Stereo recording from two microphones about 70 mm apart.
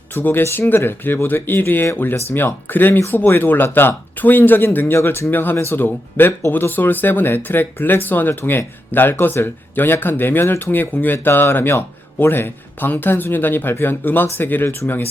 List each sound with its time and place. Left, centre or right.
0.1 s speech: left